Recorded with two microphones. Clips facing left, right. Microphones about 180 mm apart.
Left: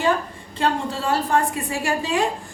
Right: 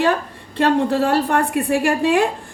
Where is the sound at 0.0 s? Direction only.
65° right (ahead or behind).